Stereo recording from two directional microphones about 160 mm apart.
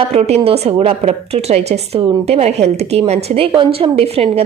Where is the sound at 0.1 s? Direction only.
40° right (ahead or behind).